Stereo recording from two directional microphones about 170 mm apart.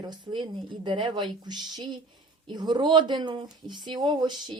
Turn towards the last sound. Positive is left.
turn(degrees=-25)  # may be behind; listen again after turning